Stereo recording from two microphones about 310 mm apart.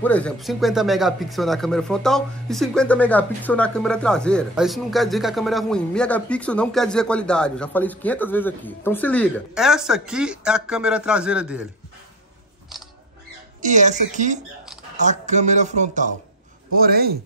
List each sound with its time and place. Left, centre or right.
0.0 s speech: centre
13.6 s speech: right